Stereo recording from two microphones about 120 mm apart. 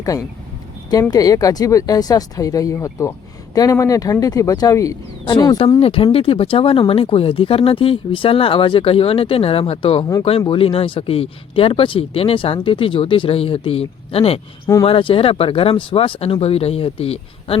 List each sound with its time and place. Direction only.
1.1 s speech: 30° left (ahead or behind)
5.2 s speech: 40° left (ahead or behind)
5.8 s speech: 50° left (ahead or behind)